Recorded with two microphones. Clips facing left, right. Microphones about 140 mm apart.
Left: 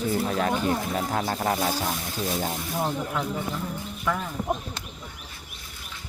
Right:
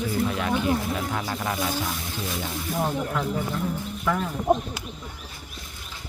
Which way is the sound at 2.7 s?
Centre (ahead or behind).